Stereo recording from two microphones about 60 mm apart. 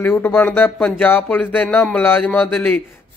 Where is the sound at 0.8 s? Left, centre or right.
Centre.